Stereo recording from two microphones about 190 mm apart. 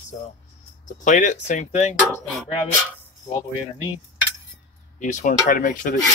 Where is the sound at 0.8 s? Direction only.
40° left (ahead or behind).